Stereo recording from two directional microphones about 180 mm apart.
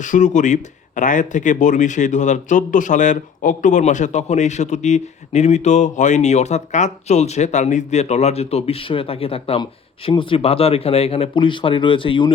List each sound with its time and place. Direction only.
0.0 s speech: 45° left (ahead or behind); by 12.3 s 30° left (ahead or behind)